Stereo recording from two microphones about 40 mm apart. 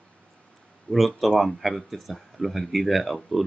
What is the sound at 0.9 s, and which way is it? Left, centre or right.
Speech, left.